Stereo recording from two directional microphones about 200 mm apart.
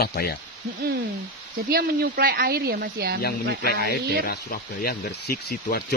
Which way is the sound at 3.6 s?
50° left (ahead or behind).